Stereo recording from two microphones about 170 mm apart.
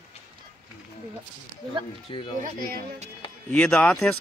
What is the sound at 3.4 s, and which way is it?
Speech, 10° left (ahead or behind).